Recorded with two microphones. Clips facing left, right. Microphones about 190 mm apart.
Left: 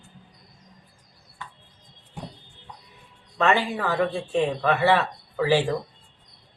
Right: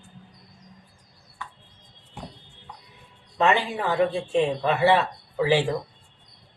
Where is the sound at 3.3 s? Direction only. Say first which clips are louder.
Even; 20° right (ahead or behind).